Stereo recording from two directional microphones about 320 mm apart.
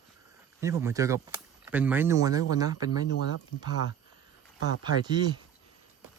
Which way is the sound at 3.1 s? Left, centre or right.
Left.